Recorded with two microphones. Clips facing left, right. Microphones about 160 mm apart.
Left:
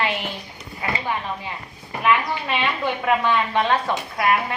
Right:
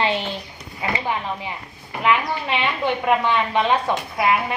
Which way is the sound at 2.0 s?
20° right (ahead or behind).